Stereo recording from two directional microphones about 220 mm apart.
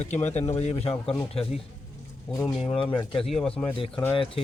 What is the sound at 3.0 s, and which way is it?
A man's voice, centre (ahead or behind).